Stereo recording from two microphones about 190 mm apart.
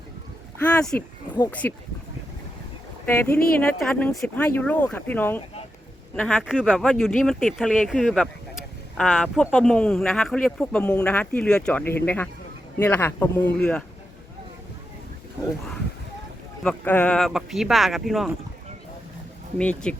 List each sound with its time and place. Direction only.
0.6 s speech: 5° left (ahead or behind)
3.3 s speech: 50° left (ahead or behind)
3.8 s speech: centre (ahead or behind)
6.4 s speech: 5° right (ahead or behind)
16.6 s speech: 10° left (ahead or behind)
19.5 s speech: 5° left (ahead or behind)